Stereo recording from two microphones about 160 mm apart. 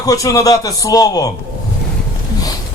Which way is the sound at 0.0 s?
20° left (ahead or behind).